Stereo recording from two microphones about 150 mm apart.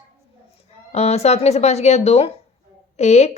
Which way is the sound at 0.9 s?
45° left (ahead or behind).